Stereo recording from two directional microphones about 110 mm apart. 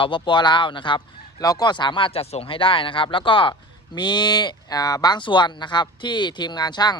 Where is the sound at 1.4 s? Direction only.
35° left (ahead or behind).